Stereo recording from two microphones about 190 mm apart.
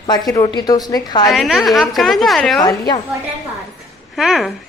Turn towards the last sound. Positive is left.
turn(degrees=0)  # may be behind; listen again after turning